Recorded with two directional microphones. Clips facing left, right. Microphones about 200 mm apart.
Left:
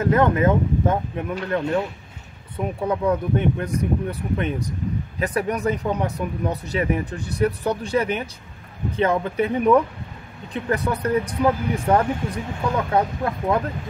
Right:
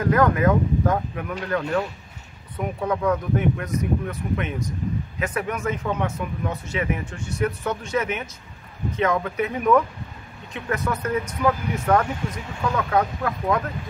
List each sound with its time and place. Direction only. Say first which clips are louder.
0.0 s speech: left 1 dB; 25° left (ahead or behind)
3.1 s speech: left 1 dB; 30° left (ahead or behind)